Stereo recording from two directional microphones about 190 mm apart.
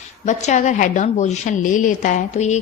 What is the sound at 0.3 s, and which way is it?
A woman's voice, 40° left (ahead or behind).